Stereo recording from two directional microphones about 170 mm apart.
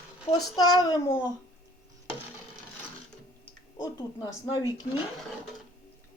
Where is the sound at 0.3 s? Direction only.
20° left (ahead or behind).